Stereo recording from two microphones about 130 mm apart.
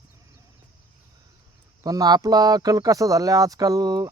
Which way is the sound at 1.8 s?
30° right (ahead or behind).